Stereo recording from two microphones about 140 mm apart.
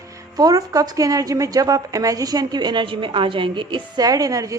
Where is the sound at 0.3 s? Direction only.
25° right (ahead or behind).